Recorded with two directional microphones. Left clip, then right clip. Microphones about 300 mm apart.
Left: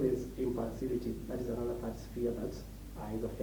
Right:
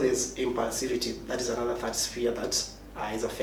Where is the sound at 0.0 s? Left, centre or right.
Centre.